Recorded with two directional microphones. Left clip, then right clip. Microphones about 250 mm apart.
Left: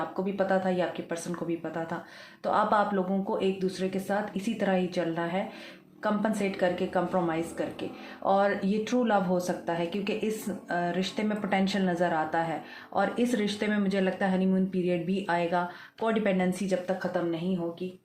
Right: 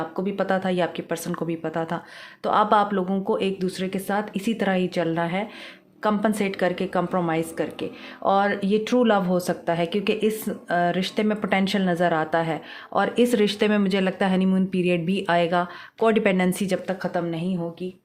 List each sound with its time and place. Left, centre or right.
0.3 s a woman's voice: right